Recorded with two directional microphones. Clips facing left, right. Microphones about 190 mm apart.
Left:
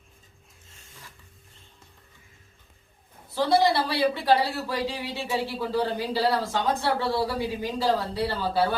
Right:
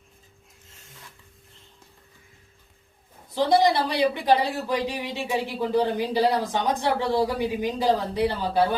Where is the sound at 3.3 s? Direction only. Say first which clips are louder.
Right 2 dB; 15° right (ahead or behind).